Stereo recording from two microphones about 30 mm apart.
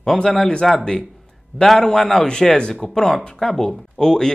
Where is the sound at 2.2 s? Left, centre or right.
Left.